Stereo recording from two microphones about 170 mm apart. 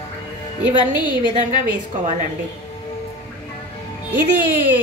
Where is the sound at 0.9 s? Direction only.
25° left (ahead or behind).